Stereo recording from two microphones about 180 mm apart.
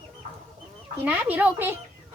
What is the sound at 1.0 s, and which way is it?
Speech, 10° right (ahead or behind).